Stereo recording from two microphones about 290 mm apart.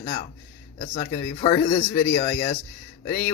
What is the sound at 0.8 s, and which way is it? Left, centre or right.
A man's voice, left.